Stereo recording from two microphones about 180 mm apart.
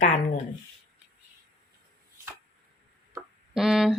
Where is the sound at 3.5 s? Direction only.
5° right (ahead or behind).